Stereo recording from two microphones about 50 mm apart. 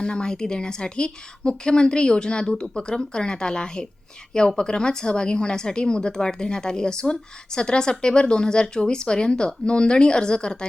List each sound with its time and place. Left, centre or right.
0.0 s speech: centre